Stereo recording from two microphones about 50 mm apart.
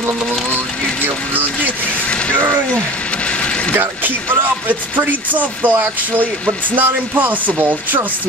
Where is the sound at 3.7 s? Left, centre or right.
Right.